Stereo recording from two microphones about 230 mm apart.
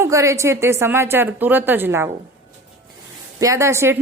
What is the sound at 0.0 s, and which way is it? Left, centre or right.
A woman's voice, centre.